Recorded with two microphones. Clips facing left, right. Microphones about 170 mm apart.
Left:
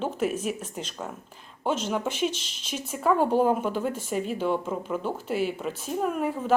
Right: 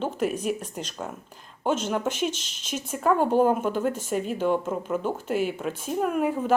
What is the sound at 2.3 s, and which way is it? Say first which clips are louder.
Speech: right 2 dB; 50° right (ahead or behind).